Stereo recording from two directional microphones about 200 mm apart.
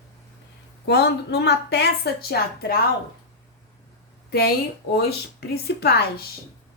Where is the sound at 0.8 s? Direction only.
55° left (ahead or behind).